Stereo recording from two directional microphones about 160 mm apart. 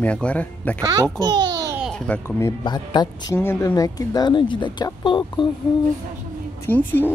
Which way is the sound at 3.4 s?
15° left (ahead or behind).